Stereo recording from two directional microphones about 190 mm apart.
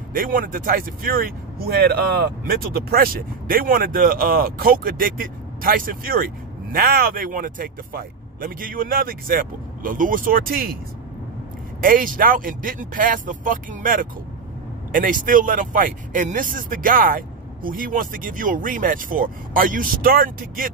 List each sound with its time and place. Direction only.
0.1 s speech: 45° right (ahead or behind)
11.8 s speech: 45° right (ahead or behind)